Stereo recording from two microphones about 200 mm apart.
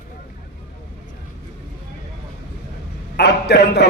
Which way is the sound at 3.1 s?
55° left (ahead or behind).